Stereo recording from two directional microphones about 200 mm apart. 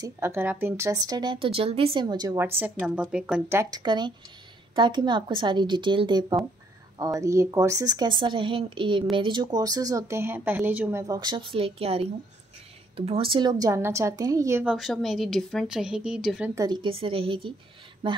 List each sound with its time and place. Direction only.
0.0 s a woman's voice: 15° right (ahead or behind)
16.5 s a woman's voice: 20° right (ahead or behind)